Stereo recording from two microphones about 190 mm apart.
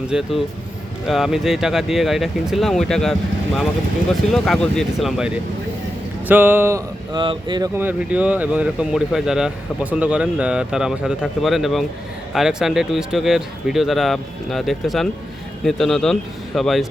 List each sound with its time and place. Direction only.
0.1 s speech: centre (ahead or behind); by 7.7 s 25° right (ahead or behind)
7.8 s speech: 10° right (ahead or behind)